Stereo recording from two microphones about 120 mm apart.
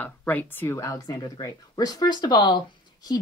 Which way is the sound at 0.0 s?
15° left (ahead or behind).